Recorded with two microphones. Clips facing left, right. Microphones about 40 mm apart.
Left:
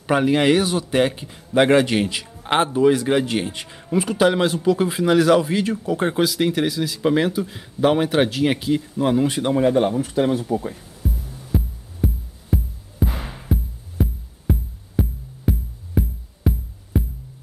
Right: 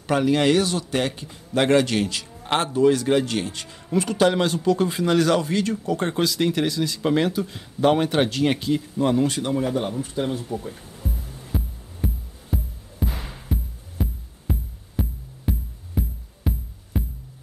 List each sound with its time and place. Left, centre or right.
0.0 s a man's voice: centre
9.6 s speech: left
10.0 s speech: left
11.5 s music: centre
13.2 s music: left
14.5 s music: centre